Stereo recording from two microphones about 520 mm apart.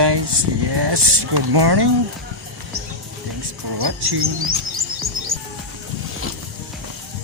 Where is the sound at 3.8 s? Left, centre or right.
Right.